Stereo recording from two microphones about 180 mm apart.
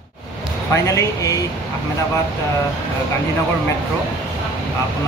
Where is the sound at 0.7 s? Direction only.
15° left (ahead or behind).